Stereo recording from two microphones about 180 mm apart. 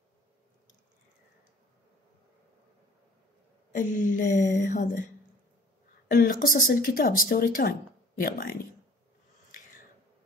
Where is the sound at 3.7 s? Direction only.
45° left (ahead or behind).